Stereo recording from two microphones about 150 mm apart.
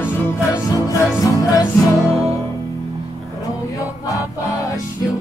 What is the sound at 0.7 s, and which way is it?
Music, 20° left (ahead or behind).